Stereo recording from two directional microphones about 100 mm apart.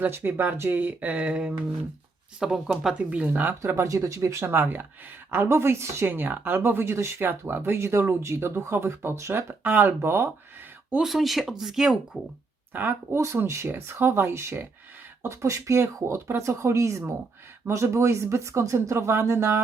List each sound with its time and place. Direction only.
0.0 s speech: 20° right (ahead or behind)
3.6 s speech: 30° right (ahead or behind)
10.9 s speech: centre (ahead or behind)
12.7 s speech: 20° right (ahead or behind)